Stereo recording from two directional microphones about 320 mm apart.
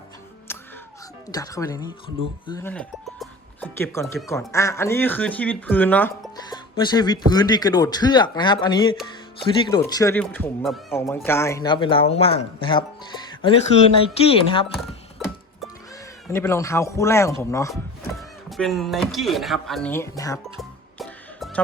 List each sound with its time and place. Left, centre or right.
1.3 s speech: centre
14.2 s speech: centre
15.2 s music: centre
16.3 s speech: centre
20.6 s music: centre